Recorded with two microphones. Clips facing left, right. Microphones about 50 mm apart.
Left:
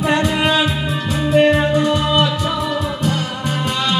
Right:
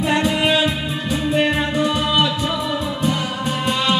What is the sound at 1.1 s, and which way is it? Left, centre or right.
Music, centre.